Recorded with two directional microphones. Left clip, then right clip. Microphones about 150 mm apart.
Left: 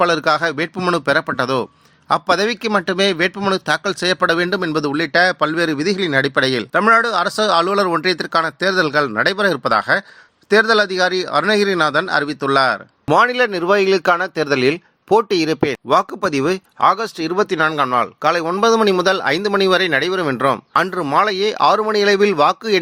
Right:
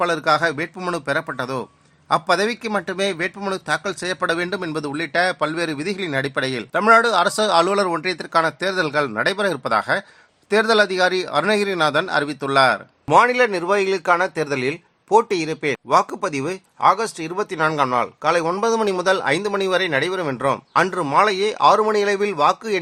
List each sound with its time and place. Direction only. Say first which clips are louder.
0.0 s speech: left 3 dB; 30° left (ahead or behind)
6.7 s speech: even; 10° left (ahead or behind)
13.1 s speech: left 1 dB; 30° left (ahead or behind)